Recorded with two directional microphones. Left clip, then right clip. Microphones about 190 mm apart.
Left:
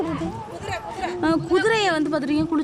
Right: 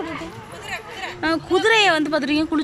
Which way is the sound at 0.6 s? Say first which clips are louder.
Left 2 dB; 55° left (ahead or behind).